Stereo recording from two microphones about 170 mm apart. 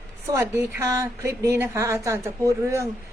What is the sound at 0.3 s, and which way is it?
A woman's voice, 15° right (ahead or behind).